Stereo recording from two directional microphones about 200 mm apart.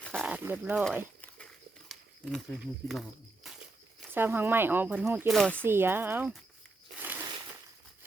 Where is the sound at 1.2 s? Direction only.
5° left (ahead or behind).